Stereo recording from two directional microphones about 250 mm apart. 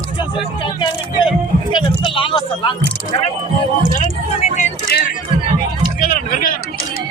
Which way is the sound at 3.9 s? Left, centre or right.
Left.